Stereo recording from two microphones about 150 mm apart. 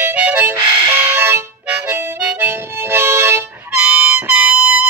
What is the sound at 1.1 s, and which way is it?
Harmonica, 15° right (ahead or behind).